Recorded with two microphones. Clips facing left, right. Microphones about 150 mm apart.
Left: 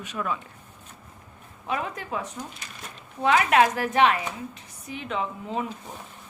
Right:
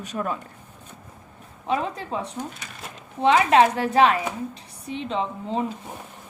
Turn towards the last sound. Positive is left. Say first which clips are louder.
# right 3 dB
turn(degrees=-30)  # may be behind; listen again after turning